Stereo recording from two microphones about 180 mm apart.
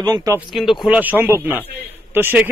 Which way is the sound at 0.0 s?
20° right (ahead or behind).